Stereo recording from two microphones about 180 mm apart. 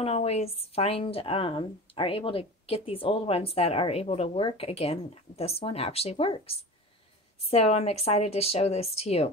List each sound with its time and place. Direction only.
0.0 s speech: 35° left (ahead or behind)